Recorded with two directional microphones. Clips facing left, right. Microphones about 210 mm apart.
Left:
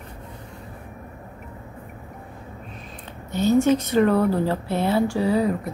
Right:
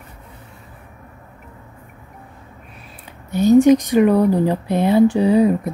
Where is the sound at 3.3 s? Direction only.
15° right (ahead or behind).